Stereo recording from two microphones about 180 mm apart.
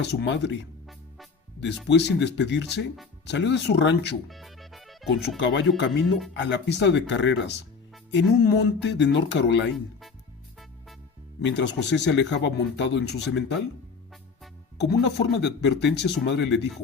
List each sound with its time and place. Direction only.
0.0 s speech: 70° left (ahead or behind)
1.9 s speech: 75° left (ahead or behind)
4.3 s music: centre (ahead or behind)
5.0 s speech: 70° left (ahead or behind)
5.4 s speech: 80° left
11.3 s speech: 75° left (ahead or behind)
14.8 s speech: 65° left (ahead or behind)